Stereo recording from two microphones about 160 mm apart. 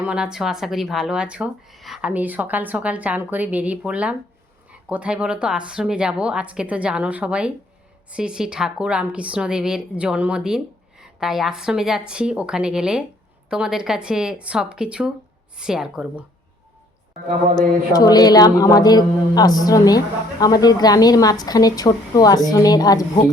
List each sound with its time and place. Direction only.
0.0 s a woman's voice: 5° right (ahead or behind)
17.9 s a woman's voice: 25° left (ahead or behind)